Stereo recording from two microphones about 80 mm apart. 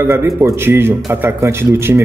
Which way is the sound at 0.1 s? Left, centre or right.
Right.